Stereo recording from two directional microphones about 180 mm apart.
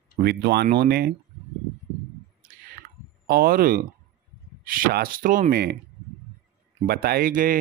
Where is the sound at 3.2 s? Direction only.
55° right (ahead or behind).